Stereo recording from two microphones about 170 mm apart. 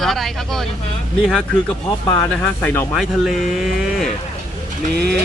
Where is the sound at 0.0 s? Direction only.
Centre (ahead or behind).